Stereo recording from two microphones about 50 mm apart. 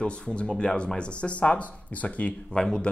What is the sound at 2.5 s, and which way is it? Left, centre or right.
Speech, centre.